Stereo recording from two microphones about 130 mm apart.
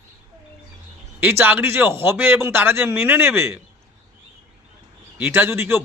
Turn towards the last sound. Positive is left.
turn(degrees=-15)  # may be behind; listen again after turning